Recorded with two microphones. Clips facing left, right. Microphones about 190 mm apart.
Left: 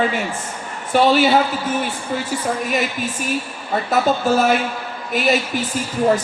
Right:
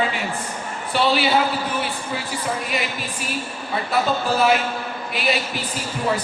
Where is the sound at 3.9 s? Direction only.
45° left (ahead or behind).